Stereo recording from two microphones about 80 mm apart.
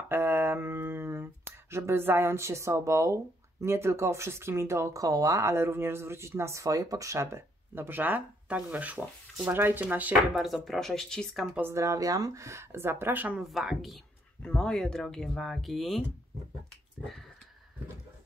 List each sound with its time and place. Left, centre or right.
0.1 s a sound: right
3.6 s speech: right
10.3 s speech: centre
11.6 s speech: right
13.4 s speech: centre
14.4 s speech: centre